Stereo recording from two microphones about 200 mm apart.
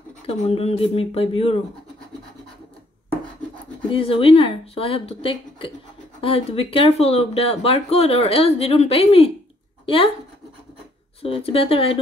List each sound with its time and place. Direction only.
0.3 s speech: 30° left (ahead or behind)
3.9 s speech: 25° left (ahead or behind)
11.2 s speech: 30° left (ahead or behind)